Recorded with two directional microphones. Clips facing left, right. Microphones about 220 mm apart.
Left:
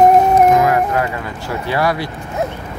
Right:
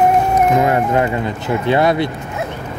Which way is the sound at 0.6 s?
25° right (ahead or behind).